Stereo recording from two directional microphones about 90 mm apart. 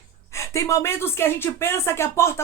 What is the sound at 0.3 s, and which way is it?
A woman's voice, 30° left (ahead or behind).